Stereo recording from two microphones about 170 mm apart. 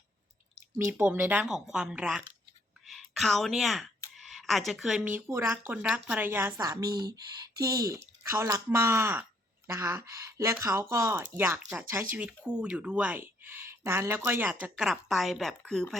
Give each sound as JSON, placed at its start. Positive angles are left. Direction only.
{"t": 0.8, "sound": "speech", "side_deg": -15}